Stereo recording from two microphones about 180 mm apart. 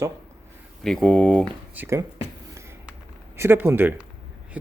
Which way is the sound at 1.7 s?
15° right (ahead or behind).